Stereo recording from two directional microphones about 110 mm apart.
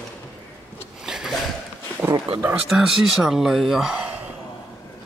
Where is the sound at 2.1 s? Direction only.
50° right (ahead or behind).